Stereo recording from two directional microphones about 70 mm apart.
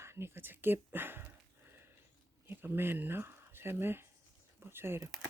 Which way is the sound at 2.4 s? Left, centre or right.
Right.